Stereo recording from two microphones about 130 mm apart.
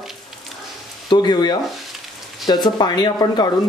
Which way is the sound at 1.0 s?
35° left (ahead or behind).